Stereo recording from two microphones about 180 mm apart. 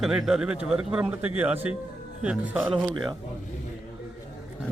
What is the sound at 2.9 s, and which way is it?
Speech, 25° right (ahead or behind).